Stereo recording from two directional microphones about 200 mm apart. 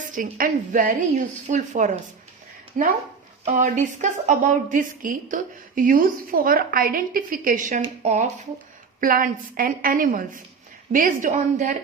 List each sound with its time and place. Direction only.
0.1 s a woman's voice: 45° right (ahead or behind)